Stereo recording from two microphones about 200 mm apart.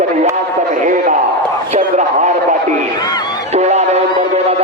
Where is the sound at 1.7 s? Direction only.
35° right (ahead or behind).